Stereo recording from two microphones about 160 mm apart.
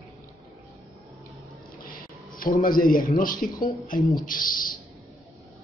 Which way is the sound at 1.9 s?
60° left (ahead or behind).